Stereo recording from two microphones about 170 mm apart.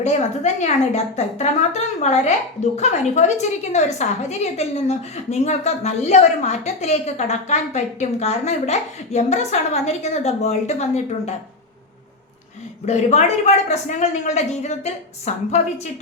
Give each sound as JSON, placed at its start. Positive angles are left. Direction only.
{"t": 0.0, "sound": "a woman's voice", "side_deg": 40}
{"t": 12.8, "sound": "a woman's voice", "side_deg": 40}